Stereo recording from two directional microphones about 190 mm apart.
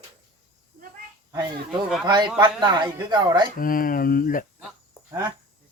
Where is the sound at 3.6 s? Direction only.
45° left (ahead or behind).